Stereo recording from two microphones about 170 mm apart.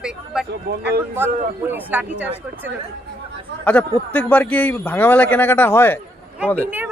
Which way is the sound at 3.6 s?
10° left (ahead or behind).